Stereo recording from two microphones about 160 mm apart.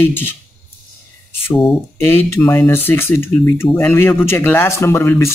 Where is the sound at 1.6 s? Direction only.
15° left (ahead or behind).